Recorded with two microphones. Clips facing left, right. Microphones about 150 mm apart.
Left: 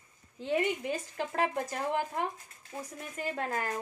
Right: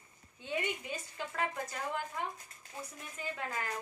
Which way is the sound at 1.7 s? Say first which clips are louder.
Left 6 dB; 45° left (ahead or behind).